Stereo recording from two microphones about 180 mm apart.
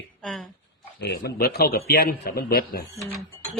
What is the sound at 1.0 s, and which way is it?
A man's voice, 60° left (ahead or behind).